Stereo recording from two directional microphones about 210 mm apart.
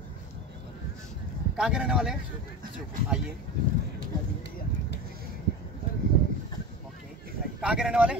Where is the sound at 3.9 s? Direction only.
55° left (ahead or behind).